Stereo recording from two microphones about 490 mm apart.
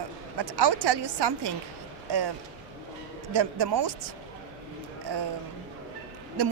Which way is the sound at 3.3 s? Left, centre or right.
Right.